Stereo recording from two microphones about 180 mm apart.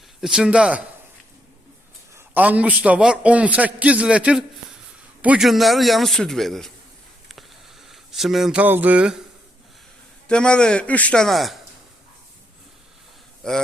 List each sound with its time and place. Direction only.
0.2 s a man's voice: 5° right (ahead or behind)
2.1 s a man's voice: 10° right (ahead or behind)
7.3 s a sound: centre (ahead or behind)
10.2 s a man's voice: 5° left (ahead or behind)
13.4 s a man's voice: 5° left (ahead or behind)